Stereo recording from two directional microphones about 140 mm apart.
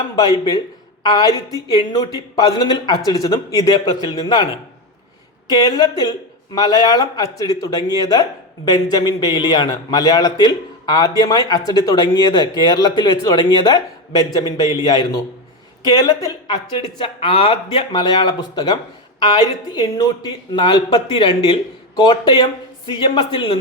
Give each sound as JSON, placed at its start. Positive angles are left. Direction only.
{"t": 0.2, "sound": "a man's voice", "side_deg": 30}
{"t": 5.5, "sound": "a man's voice", "side_deg": 30}
{"t": 17.0, "sound": "speech", "side_deg": 40}